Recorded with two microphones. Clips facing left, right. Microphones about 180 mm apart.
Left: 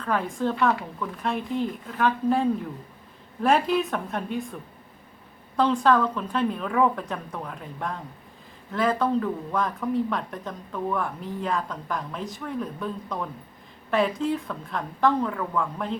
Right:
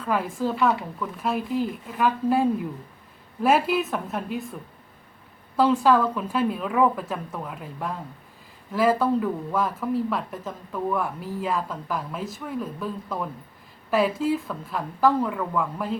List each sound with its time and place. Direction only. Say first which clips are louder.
0.0 s speech: right 1 dB; 5° right (ahead or behind)
5.5 s speech: right 2 dB; 5° right (ahead or behind)